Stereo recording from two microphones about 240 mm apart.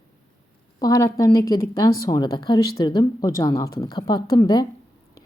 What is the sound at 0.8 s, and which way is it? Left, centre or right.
A woman's voice, centre.